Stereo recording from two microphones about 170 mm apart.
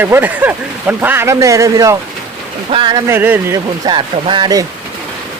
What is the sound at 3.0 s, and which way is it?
Speech, 10° right (ahead or behind).